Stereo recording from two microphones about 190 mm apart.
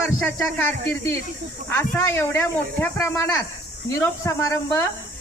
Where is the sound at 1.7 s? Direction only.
10° left (ahead or behind).